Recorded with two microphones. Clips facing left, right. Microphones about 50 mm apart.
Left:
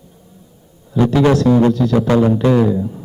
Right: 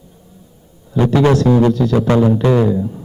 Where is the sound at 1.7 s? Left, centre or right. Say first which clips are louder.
Even; centre.